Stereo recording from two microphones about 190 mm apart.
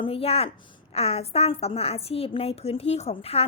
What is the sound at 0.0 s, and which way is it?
A woman's voice, 30° left (ahead or behind).